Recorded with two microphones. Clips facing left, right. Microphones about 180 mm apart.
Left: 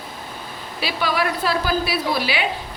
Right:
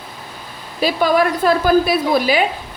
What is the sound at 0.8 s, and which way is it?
A woman's voice, 45° right (ahead or behind).